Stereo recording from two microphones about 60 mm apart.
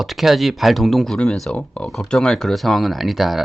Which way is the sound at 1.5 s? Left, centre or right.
Centre.